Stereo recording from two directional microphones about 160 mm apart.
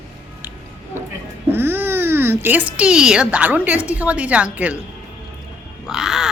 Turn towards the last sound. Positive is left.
turn(degrees=-5)  # may be behind; listen again after turning